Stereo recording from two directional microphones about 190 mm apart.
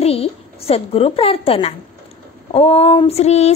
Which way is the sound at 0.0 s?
30° left (ahead or behind).